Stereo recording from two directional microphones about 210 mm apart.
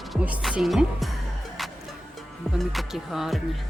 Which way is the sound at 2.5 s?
Centre (ahead or behind).